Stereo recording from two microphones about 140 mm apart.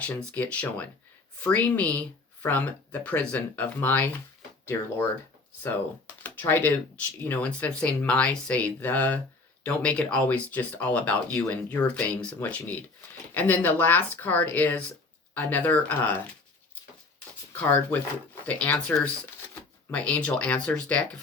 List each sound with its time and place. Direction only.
0.0 s speech: 10° left (ahead or behind)
6.2 s speech: 15° left (ahead or behind)
17.5 s speech: 10° left (ahead or behind)